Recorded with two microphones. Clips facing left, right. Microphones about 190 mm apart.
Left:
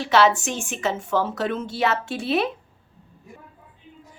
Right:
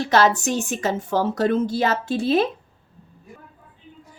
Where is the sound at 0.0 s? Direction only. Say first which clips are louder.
Even; 40° right (ahead or behind).